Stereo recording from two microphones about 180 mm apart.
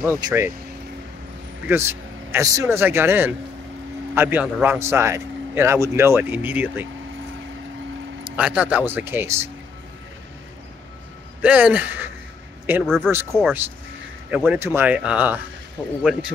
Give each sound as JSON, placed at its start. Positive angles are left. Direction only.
{"t": 0.2, "sound": "speech", "side_deg": -20}
{"t": 1.7, "sound": "a man's voice", "side_deg": -15}
{"t": 8.4, "sound": "a man's voice", "side_deg": -5}
{"t": 11.4, "sound": "a man's voice", "side_deg": -10}
{"t": 12.8, "sound": "speech", "side_deg": 5}
{"t": 13.4, "sound": "a man's voice", "side_deg": -10}